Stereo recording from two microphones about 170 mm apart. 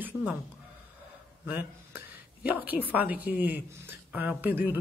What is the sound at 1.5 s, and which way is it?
Speech, 10° right (ahead or behind).